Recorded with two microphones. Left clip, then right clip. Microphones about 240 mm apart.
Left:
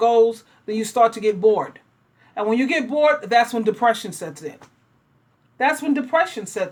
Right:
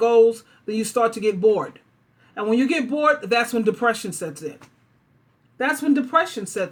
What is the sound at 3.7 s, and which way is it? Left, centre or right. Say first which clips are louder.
Speech: left 3 dB; centre.